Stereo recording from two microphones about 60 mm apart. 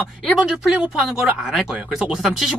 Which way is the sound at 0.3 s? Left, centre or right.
Centre.